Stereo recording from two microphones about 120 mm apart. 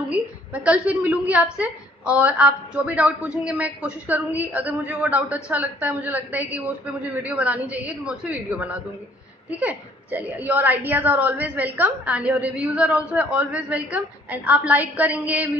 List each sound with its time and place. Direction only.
0.1 s a woman's voice: 10° right (ahead or behind)